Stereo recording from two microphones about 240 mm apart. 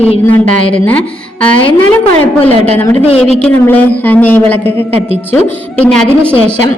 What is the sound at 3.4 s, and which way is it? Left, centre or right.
A man's voice, centre.